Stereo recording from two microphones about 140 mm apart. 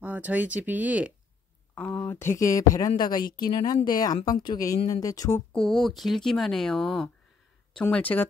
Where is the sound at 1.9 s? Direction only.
20° left (ahead or behind).